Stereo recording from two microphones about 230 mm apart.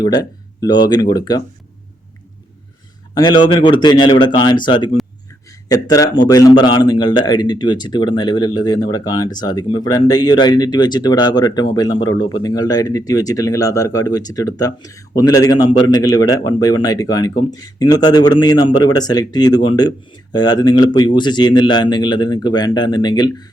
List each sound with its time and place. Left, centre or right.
0.0 s a man's voice: centre
3.2 s speech: centre
5.5 s a sound: centre
6.2 s a man's voice: centre